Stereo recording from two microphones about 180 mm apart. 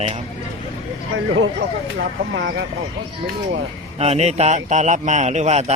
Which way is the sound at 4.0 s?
35° right (ahead or behind).